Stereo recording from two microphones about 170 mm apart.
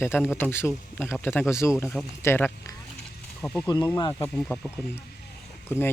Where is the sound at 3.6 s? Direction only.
25° left (ahead or behind).